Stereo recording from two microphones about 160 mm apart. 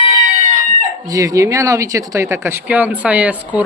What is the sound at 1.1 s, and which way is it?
Speech, 20° right (ahead or behind).